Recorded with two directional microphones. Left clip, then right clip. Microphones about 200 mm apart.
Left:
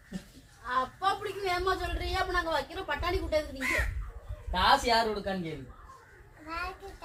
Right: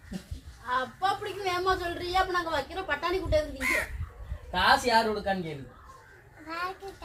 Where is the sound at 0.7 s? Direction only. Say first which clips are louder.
Right 1 dB; 10° right (ahead or behind).